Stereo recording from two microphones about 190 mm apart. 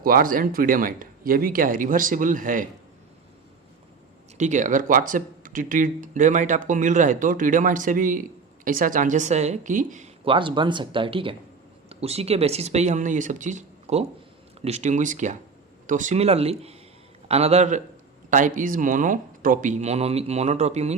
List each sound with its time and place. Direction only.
0.0 s speech: 50° right (ahead or behind)
4.4 s speech: 40° right (ahead or behind)